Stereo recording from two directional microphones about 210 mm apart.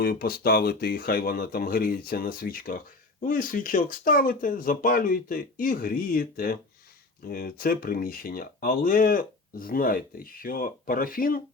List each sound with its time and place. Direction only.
0.0 s speech: 45° left (ahead or behind)